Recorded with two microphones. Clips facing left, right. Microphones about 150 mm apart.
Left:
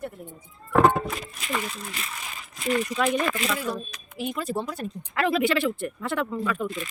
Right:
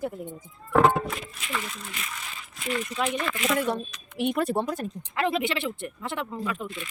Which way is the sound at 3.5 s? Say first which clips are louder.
Right 4 dB; 65° right (ahead or behind).